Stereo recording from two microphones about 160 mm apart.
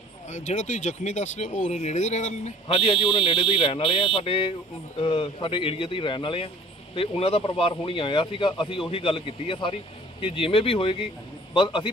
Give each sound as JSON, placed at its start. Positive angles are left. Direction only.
{"t": 0.3, "sound": "speech", "side_deg": 50}
{"t": 2.6, "sound": "speech", "side_deg": 35}